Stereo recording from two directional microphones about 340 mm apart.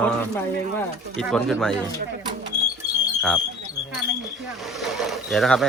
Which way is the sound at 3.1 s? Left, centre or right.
Centre.